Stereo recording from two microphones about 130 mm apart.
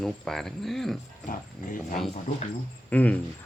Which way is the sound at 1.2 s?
90° left.